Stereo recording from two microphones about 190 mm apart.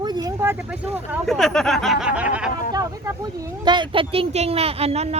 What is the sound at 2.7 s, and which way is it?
Speech, 15° right (ahead or behind).